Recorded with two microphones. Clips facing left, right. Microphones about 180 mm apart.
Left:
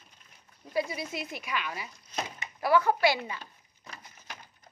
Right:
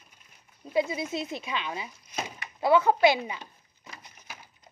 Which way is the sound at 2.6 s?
20° right (ahead or behind).